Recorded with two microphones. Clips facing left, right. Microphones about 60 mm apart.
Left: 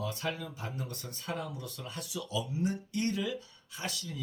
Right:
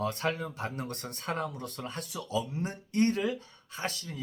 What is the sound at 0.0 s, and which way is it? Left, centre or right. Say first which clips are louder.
Speech: right 5 dB; right.